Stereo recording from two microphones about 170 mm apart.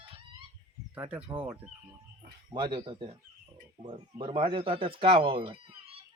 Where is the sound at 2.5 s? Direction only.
25° right (ahead or behind).